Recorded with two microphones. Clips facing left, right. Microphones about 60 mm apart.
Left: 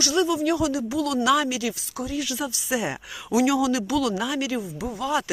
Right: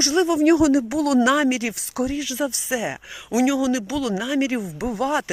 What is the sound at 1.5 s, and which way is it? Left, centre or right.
Speech, right.